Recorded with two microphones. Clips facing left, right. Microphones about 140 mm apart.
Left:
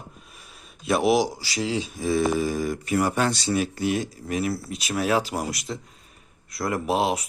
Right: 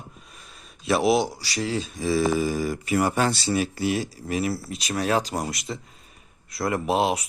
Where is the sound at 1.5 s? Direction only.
15° left (ahead or behind).